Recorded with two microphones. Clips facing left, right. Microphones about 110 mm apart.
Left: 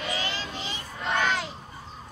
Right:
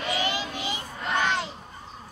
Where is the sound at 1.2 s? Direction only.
Centre (ahead or behind).